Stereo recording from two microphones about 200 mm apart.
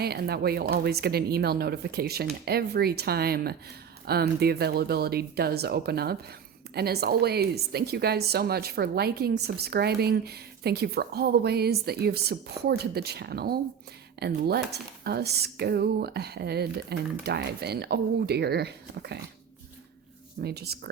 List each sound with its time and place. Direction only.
0.0 s speech: 50° right (ahead or behind)
20.4 s speech: 55° right (ahead or behind)